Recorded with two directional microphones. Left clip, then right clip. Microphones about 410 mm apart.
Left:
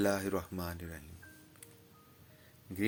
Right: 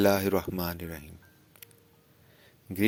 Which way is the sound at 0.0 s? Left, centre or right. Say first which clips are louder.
Right 8 dB; right.